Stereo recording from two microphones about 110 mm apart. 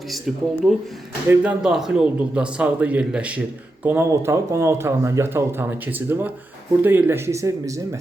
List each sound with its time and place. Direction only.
0.1 s speech: centre (ahead or behind)
1.3 s a man's voice: 10° right (ahead or behind); by 7.8 s 30° right (ahead or behind)